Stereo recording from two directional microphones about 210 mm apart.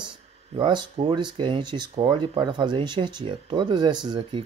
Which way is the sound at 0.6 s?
25° right (ahead or behind).